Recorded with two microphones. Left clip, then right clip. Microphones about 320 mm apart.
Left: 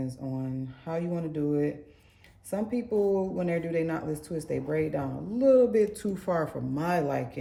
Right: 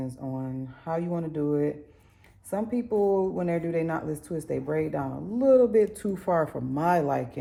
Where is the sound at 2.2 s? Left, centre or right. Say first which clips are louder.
Right 2 dB; centre.